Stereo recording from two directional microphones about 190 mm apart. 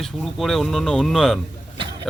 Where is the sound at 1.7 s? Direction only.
25° right (ahead or behind).